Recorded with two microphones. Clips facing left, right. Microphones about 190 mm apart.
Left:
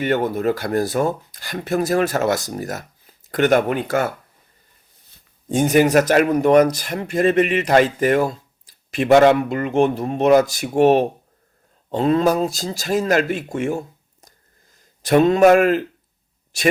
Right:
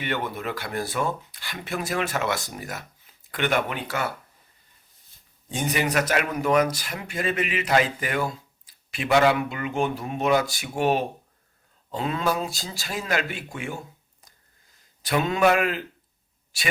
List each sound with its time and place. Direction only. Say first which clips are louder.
0.0 s speech: left 10 dB; 40° left (ahead or behind)
5.5 s speech: left 11 dB; 50° left (ahead or behind)
15.0 s speech: left 9 dB; 40° left (ahead or behind)